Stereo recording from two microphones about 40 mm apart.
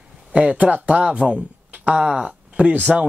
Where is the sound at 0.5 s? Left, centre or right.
Right.